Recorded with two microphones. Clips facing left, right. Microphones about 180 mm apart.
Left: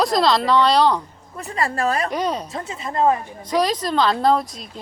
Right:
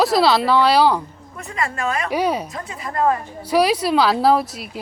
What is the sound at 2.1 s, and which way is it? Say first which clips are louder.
Speech: right 3 dB; 10° right (ahead or behind).